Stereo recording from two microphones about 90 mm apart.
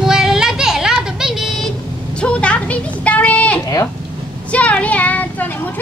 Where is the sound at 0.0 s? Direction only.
5° right (ahead or behind).